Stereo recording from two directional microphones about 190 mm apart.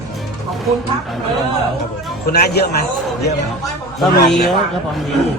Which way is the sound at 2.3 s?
55° left (ahead or behind).